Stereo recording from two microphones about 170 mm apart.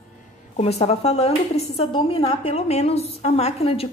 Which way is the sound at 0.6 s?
40° left (ahead or behind).